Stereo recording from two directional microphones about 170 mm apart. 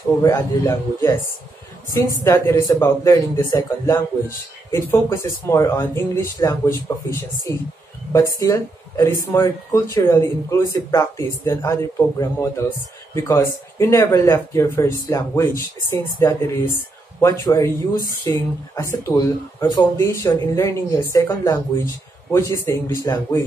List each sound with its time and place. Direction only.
0.2 s speech: 20° left (ahead or behind)
2.2 s speech: 15° left (ahead or behind)